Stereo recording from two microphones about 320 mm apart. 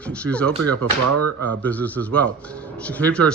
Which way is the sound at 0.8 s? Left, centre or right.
Right.